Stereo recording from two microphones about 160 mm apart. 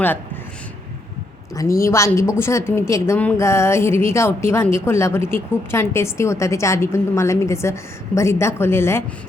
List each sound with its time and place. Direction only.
1.5 s a woman's voice: 20° left (ahead or behind)